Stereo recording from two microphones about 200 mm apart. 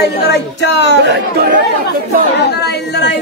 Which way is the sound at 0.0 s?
55° left (ahead or behind).